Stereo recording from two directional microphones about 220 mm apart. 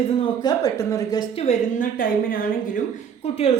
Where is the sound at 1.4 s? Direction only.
35° left (ahead or behind).